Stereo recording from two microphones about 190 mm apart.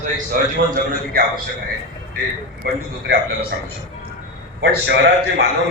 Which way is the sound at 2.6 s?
55° right (ahead or behind).